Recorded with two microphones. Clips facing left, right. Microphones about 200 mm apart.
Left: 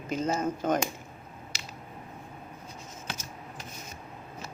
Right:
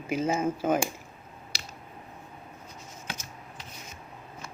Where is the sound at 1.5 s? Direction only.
35° right (ahead or behind).